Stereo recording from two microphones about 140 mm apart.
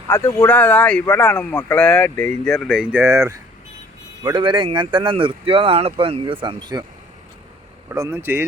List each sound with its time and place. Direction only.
0.1 s speech: 20° left (ahead or behind); by 3.0 s 5° right (ahead or behind)
3.0 s speech: 20° right (ahead or behind)
4.2 s speech: 35° right (ahead or behind)
7.9 s speech: 20° right (ahead or behind)